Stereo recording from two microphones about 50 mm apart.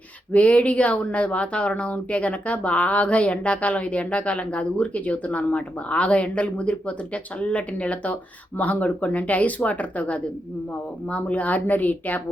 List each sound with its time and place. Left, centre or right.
0.3 s speech: left
11.3 s a woman's voice: left